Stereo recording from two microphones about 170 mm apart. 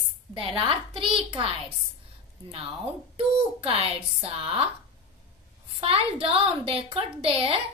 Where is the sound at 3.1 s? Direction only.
35° right (ahead or behind).